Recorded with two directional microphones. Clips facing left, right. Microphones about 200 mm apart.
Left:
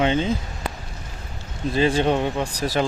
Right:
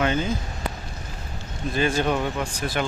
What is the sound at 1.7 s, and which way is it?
Speech, 30° left (ahead or behind).